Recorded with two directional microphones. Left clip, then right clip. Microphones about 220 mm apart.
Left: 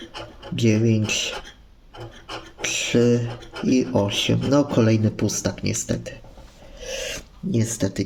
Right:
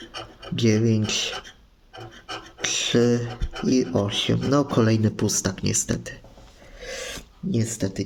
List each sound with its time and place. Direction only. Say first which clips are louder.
0.5 s speech: left 1 dB; 5° right (ahead or behind)
2.6 s speech: left 1 dB; 5° right (ahead or behind)
6.7 s filing: left 4 dB; 5° right (ahead or behind)